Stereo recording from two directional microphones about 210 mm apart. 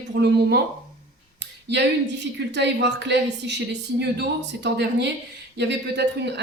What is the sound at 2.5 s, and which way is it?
A woman's voice, 55° right (ahead or behind).